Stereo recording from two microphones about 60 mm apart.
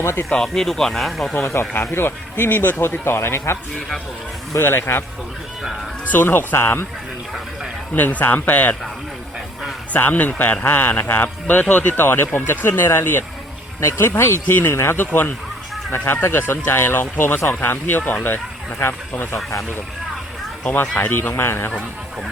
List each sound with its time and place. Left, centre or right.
0.0 s speech: left
0.4 s speech: centre
1.5 s speech: left
3.8 s speech: centre
4.6 s speech: left
6.1 s speech: left
7.9 s speech: left
9.9 s speech: left
12.0 s speech: left
20.9 s speech: left